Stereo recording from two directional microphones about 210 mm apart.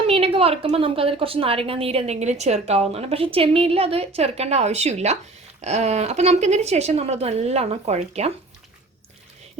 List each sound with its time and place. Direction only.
0.1 s a woman's voice: 30° right (ahead or behind)